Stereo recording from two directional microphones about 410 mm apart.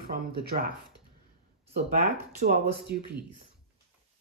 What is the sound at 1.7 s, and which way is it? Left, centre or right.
Speech, right.